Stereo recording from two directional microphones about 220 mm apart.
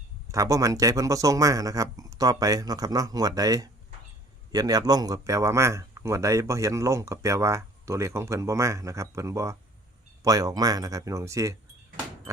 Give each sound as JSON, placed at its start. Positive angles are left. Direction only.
{"t": 0.3, "sound": "speech", "side_deg": -15}